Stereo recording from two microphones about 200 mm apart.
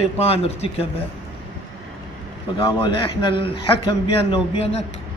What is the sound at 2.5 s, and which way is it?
A man's voice, 25° left (ahead or behind).